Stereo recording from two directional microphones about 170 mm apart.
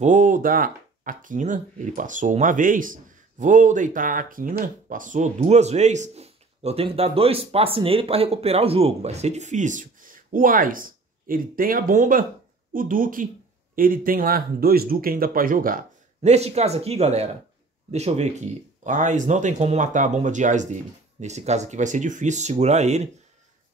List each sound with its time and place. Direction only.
0.0 s speech: 50° right (ahead or behind)
16.2 s speech: 40° right (ahead or behind)